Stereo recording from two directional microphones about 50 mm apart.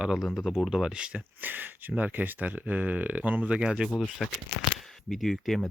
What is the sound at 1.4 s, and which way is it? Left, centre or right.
Speech, right.